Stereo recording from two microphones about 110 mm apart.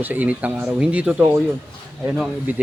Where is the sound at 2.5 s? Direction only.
15° right (ahead or behind).